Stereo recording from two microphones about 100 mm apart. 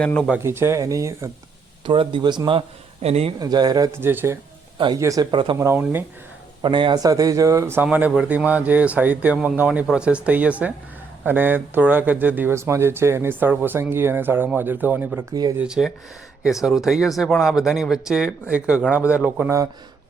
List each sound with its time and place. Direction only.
0.0 s speech: 10° left (ahead or behind)
0.3 s speech: 25° right (ahead or behind)
1.8 s a man's voice: 55° right (ahead or behind); by 3.3 s 90° right
3.4 s speech: 45° right (ahead or behind)
3.9 s speech: 20° right (ahead or behind)
4.9 s speech: 35° right (ahead or behind)
5.3 s a man's voice: 55° right (ahead or behind)
5.5 s speech: 25° right (ahead or behind)
6.6 s a man's voice: 55° right (ahead or behind)
7.0 s speech: 35° right (ahead or behind)
7.9 s speech: 15° right (ahead or behind)
12.5 s speech: 25° right (ahead or behind)
15.3 s speech: 40° right (ahead or behind)
15.5 s speech: 5° right (ahead or behind)